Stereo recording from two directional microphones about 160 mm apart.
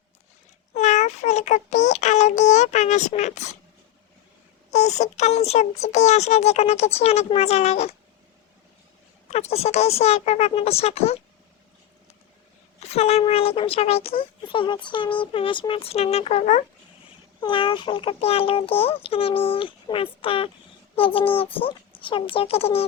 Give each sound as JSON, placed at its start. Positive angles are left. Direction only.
{"t": 0.7, "sound": "child singing", "side_deg": 45}
{"t": 4.7, "sound": "a child's voice", "side_deg": 45}
{"t": 9.3, "sound": "a child's voice", "side_deg": 40}
{"t": 12.8, "sound": "a child's voice", "side_deg": 40}
{"t": 17.4, "sound": "a child's voice", "side_deg": 30}